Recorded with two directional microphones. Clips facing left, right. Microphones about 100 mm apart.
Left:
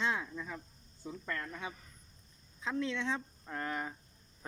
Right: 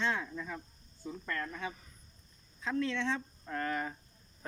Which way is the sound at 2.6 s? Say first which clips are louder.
Right 2 dB; 15° left (ahead or behind).